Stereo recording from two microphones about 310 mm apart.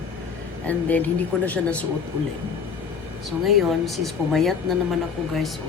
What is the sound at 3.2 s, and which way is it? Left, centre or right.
A woman's voice, centre.